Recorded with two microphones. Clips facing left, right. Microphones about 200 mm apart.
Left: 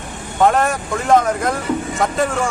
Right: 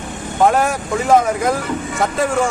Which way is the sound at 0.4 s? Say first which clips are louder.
Even; centre (ahead or behind).